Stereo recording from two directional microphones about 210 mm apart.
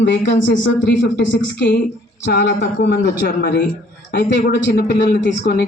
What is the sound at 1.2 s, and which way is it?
Speech, 55° left (ahead or behind).